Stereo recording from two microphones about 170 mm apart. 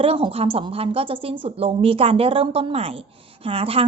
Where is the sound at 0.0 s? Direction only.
35° right (ahead or behind).